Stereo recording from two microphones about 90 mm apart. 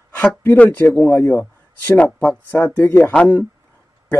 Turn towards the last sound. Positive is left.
turn(degrees=15)  # may be behind; listen again after turning